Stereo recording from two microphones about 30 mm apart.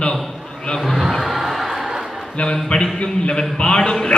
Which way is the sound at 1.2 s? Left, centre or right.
Centre.